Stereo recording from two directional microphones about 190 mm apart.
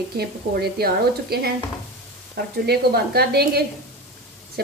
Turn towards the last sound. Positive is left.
turn(degrees=-55)  # may be behind; listen again after turning